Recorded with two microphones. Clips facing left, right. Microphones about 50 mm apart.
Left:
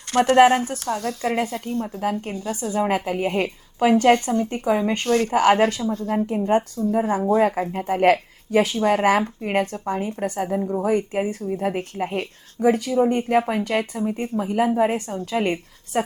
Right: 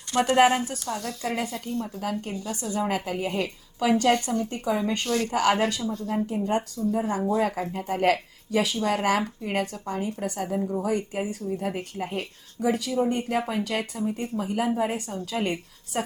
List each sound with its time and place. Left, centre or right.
0.1 s speech: left
0.3 s a woman's voice: left
5.3 s a woman's voice: left
7.0 s speech: left
7.3 s a woman's voice: left
10.8 s a woman's voice: left